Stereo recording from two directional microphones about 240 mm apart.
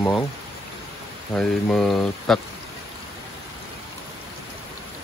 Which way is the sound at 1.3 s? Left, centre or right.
Centre.